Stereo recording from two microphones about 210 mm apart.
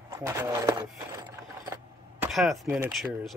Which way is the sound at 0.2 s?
15° right (ahead or behind).